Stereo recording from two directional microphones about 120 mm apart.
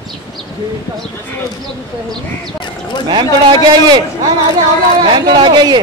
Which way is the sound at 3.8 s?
35° right (ahead or behind).